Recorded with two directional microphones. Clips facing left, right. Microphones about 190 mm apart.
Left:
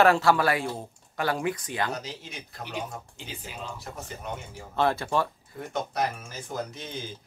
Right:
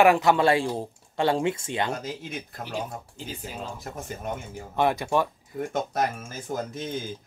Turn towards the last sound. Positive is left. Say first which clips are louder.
# right 4 dB
turn(degrees=-50)  # may be behind; listen again after turning